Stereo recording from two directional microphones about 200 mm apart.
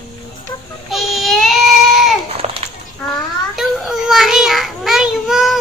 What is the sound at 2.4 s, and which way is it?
Children playing, 30° right (ahead or behind).